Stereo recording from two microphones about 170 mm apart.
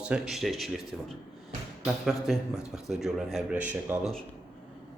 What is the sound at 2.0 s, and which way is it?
A man's voice, centre (ahead or behind).